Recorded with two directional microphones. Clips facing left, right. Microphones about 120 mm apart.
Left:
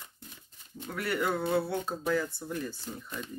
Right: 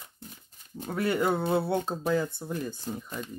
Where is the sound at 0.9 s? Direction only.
25° right (ahead or behind).